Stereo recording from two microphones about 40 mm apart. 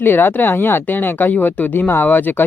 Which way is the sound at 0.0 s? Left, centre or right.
Left.